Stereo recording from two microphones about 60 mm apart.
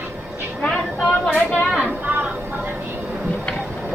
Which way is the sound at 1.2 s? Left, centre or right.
Centre.